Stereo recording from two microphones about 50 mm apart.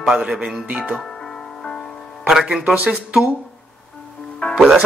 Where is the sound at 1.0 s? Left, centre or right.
Centre.